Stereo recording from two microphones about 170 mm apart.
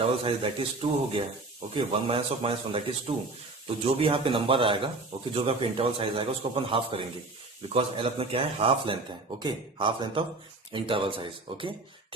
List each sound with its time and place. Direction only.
0.2 s speech: 30° right (ahead or behind)
3.8 s speech: 30° right (ahead or behind)